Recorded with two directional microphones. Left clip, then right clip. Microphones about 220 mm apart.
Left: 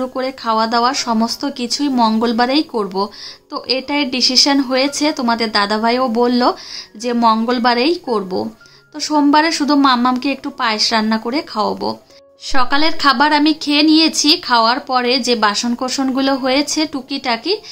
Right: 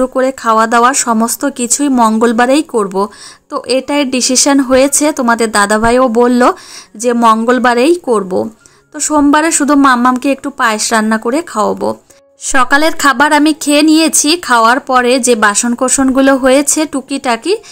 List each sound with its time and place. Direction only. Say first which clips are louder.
0.0 s a woman's voice: right 8 dB; 25° right (ahead or behind)